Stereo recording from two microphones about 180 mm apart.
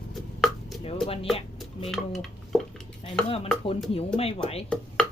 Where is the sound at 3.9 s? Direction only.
35° left (ahead or behind).